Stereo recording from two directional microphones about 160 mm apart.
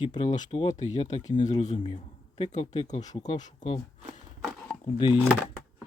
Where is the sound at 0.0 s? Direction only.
50° left (ahead or behind).